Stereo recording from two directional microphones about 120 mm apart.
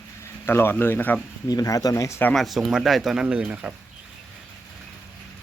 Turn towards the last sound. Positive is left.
turn(degrees=-10)  # may be behind; listen again after turning